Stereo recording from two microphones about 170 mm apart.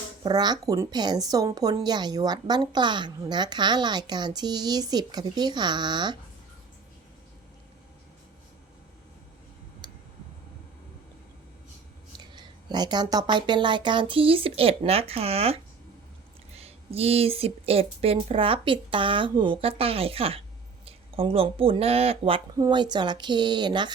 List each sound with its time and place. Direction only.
0.2 s a woman's voice: 25° right (ahead or behind)
12.2 s a woman's voice: 25° right (ahead or behind)
22.5 s a woman's voice: 25° right (ahead or behind)